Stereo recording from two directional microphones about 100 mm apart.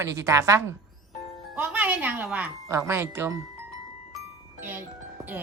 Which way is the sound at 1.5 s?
15° right (ahead or behind).